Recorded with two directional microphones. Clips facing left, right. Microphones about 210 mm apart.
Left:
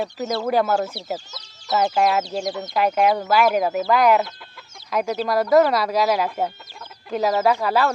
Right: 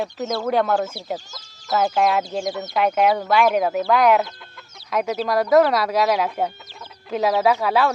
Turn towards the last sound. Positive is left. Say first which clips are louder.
# right 1 dB
turn(degrees=0)  # may be behind; listen again after turning